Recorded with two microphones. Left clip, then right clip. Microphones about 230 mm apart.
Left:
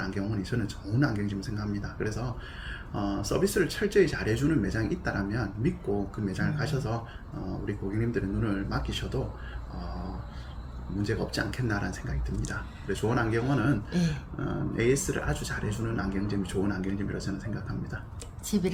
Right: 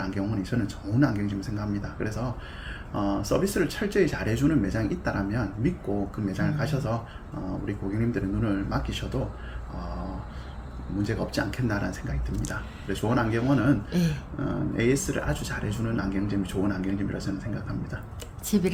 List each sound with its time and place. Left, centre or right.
0.0 s speech: centre
11.0 s speech: centre